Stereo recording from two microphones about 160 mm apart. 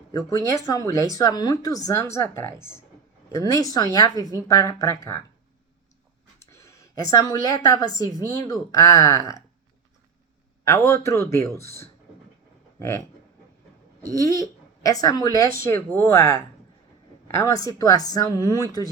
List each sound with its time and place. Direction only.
0.1 s speech: 20° left (ahead or behind)
6.4 s a woman's voice: 20° left (ahead or behind)
10.7 s a man's voice: 15° left (ahead or behind)
14.1 s speech: 20° left (ahead or behind)
17.4 s speech: 20° left (ahead or behind)